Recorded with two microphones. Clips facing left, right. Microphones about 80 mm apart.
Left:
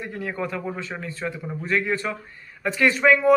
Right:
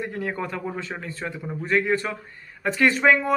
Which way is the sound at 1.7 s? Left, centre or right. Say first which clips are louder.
Right 2 dB; right.